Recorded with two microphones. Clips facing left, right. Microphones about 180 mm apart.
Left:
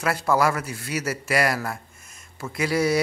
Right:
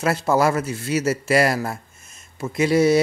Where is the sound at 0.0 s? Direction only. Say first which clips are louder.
Right 3 dB; 25° right (ahead or behind).